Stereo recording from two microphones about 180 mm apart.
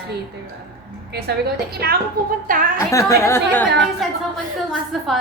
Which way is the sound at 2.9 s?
15° left (ahead or behind).